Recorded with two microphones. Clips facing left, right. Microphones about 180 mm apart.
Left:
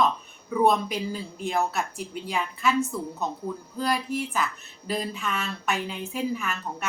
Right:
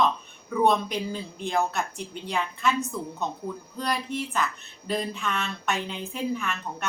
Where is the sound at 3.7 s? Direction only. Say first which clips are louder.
Left 3 dB; 5° left (ahead or behind).